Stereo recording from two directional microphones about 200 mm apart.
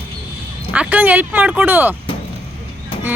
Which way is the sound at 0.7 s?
5° right (ahead or behind).